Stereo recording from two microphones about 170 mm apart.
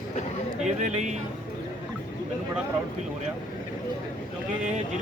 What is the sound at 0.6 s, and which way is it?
Speech, 40° right (ahead or behind).